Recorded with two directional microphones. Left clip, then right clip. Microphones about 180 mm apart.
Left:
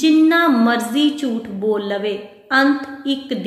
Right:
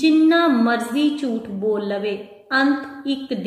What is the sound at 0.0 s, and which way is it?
Music, 15° left (ahead or behind).